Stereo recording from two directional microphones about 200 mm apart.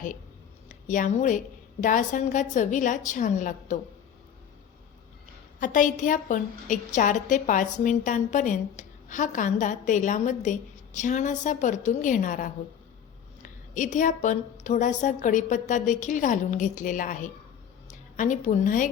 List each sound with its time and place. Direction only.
0.7 s a woman's voice: 40° left (ahead or behind)
5.5 s a woman's voice: 40° left (ahead or behind)